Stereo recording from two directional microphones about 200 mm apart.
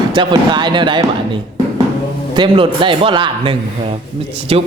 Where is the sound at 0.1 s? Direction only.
20° right (ahead or behind).